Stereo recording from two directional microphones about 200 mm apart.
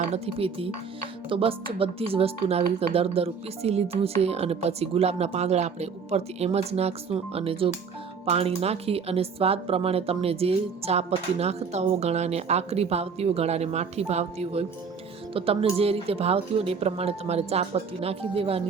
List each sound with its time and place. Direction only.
0.0 s a woman's voice: 30° right (ahead or behind)